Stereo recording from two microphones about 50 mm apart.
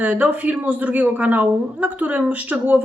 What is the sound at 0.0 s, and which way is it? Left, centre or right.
Speech, right.